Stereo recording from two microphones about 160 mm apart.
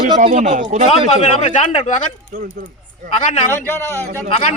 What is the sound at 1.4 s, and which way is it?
Speech, 50° left (ahead or behind).